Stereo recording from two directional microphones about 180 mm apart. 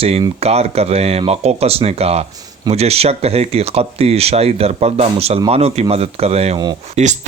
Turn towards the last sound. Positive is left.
turn(degrees=-40)  # may be behind; listen again after turning